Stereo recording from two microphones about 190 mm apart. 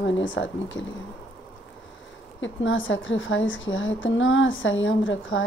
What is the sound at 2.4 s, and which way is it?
A woman's voice, 90° left.